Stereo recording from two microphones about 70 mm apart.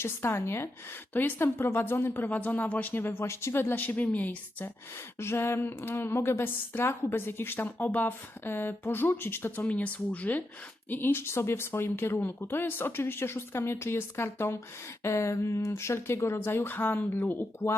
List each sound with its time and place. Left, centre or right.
0.0 s a woman's voice: left
5.2 s a woman's voice: left
9.6 s a woman's voice: left